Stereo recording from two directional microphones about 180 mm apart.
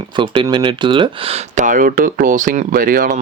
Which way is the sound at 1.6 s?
50° right (ahead or behind).